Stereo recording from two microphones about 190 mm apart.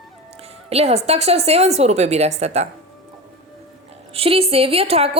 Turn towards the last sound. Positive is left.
turn(degrees=-30)  # may be behind; listen again after turning